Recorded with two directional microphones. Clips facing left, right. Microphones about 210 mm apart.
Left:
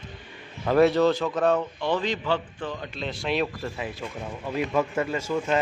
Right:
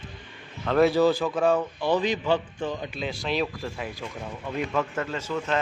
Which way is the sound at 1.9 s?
15° right (ahead or behind).